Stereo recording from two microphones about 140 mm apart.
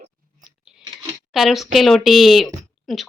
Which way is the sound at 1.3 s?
Centre (ahead or behind).